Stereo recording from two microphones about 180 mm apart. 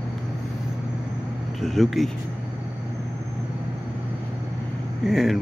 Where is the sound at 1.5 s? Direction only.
Centre (ahead or behind).